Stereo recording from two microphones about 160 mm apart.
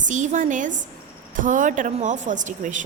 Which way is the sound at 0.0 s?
50° right (ahead or behind).